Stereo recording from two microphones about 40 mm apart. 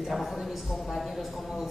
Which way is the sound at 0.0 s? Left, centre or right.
Centre.